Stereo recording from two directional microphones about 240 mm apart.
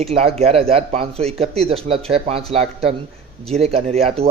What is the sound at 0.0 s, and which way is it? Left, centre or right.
A man's voice, right.